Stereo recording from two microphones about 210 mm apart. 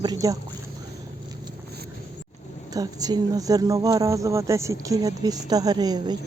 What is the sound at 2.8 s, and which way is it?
Speech, 15° right (ahead or behind).